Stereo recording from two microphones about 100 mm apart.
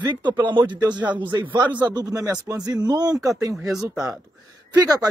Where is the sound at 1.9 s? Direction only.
35° right (ahead or behind).